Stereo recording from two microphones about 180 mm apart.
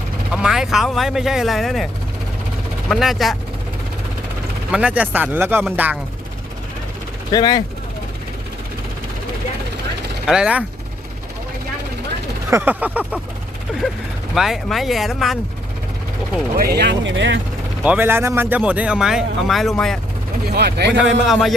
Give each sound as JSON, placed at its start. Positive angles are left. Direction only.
{"t": 0.3, "sound": "speech", "side_deg": -5}
{"t": 2.9, "sound": "speech", "side_deg": 0}
{"t": 4.7, "sound": "speech", "side_deg": -5}
{"t": 7.3, "sound": "speech", "side_deg": 25}
{"t": 10.2, "sound": "speech", "side_deg": -5}
{"t": 12.5, "sound": "speech", "side_deg": -10}
{"t": 14.3, "sound": "speech", "side_deg": 0}
{"t": 16.6, "sound": "speech", "side_deg": -60}
{"t": 17.8, "sound": "speech", "side_deg": -10}
{"t": 20.4, "sound": "speech", "side_deg": -65}
{"t": 21.0, "sound": "speech", "side_deg": 0}